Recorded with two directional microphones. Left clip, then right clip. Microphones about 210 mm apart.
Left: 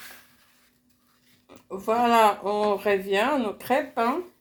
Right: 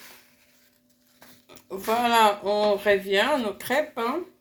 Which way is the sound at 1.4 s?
10° left (ahead or behind).